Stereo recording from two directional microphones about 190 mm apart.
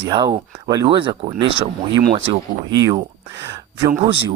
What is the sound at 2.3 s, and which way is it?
Speech, 20° right (ahead or behind).